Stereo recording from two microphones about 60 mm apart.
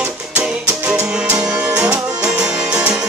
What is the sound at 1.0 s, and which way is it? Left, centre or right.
Music, centre.